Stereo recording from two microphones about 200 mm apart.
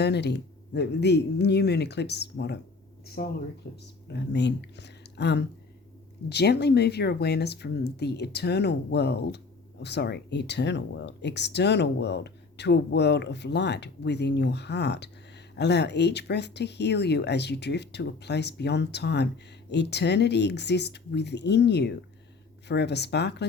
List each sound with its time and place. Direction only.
0.0 s speech: 55° left (ahead or behind)